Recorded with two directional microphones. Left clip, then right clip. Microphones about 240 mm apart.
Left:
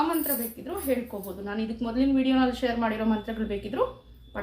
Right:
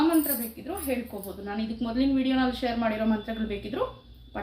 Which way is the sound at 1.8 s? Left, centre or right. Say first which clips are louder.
Left 1 dB; centre.